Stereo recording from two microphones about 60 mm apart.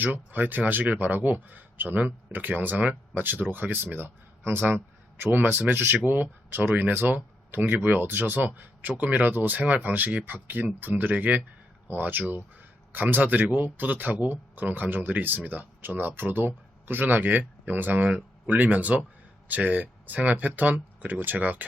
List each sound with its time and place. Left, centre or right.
0.0 s speech: right